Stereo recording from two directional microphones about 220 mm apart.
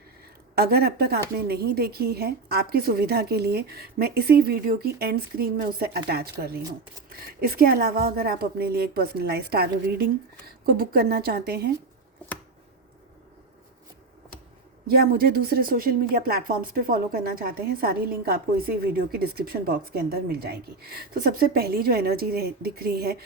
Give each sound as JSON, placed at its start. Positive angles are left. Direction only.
{"t": 0.5, "sound": "a woman's voice", "side_deg": -45}
{"t": 14.8, "sound": "a woman's voice", "side_deg": -45}